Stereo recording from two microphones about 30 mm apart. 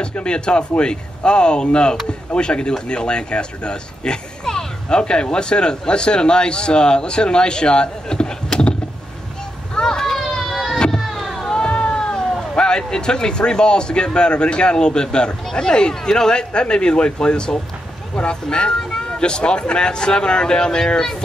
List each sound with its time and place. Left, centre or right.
0.2 s a man's voice: left
4.5 s a sound: left
4.8 s a man's voice: left
9.8 s a sound: left
10.1 s a sound: centre
11.0 s vehicle: centre
11.5 s cat: left
11.9 s speech: left
15.9 s a man's voice: centre